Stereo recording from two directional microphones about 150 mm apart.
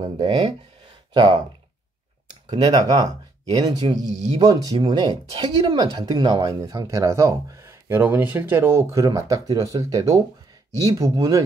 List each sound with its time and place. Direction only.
0.0 s speech: 30° right (ahead or behind)
2.5 s speech: 30° right (ahead or behind)